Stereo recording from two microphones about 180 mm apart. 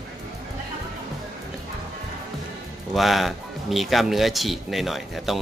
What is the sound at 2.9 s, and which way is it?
Speech, centre (ahead or behind).